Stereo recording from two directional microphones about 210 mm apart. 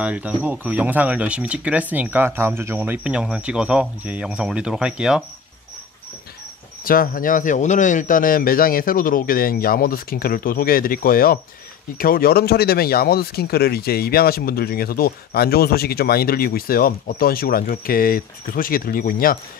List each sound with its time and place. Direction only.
0.0 s speech: 5° right (ahead or behind)
6.8 s speech: 45° left (ahead or behind)